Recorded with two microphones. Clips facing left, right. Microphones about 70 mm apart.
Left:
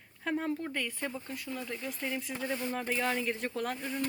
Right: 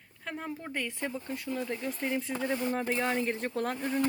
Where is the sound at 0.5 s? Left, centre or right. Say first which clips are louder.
Left 1 dB; centre.